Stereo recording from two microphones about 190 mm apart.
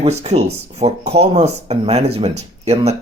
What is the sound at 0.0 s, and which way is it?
Speech, 35° right (ahead or behind).